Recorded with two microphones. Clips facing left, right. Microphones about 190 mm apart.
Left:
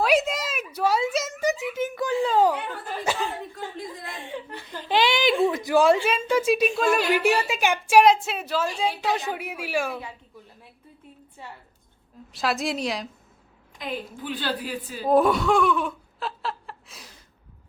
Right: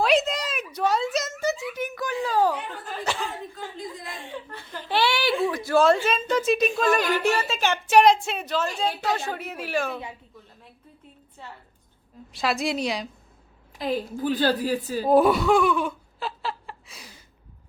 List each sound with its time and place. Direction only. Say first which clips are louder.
0.0 s a sound: even; 10° left (ahead or behind)
4.3 s a woman's voice: left 2 dB; 15° left (ahead or behind)
12.3 s a woman's voice: right 1 dB; centre (ahead or behind)
13.7 s a woman's voice: right 6 dB; 35° right (ahead or behind)
15.0 s speech: right 1 dB; 5° right (ahead or behind)